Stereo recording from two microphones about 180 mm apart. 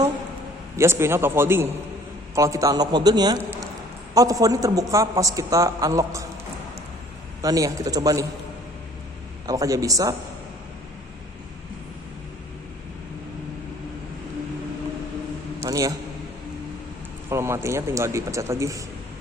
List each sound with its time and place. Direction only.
0.8 s a man's voice: 15° right (ahead or behind)
7.4 s a man's voice: 20° right (ahead or behind)
9.5 s a man's voice: 20° right (ahead or behind)
15.6 s a sound: 20° right (ahead or behind)
17.2 s a man's voice: 15° right (ahead or behind)